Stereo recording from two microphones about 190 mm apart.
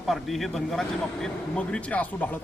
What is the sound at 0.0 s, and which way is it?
A man's voice, centre (ahead or behind).